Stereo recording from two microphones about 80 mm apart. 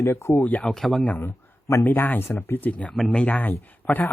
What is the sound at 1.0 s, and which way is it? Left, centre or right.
Speech, centre.